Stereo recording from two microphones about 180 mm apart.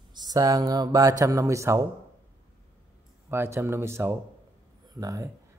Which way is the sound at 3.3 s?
15° right (ahead or behind).